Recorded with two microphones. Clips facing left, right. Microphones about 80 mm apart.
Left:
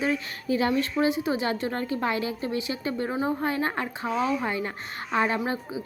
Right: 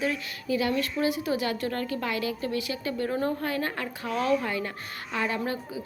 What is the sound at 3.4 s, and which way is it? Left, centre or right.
A child's voice, left.